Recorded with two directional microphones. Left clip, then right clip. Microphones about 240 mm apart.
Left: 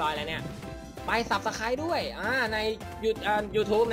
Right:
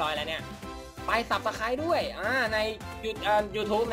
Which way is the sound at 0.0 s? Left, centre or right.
Left.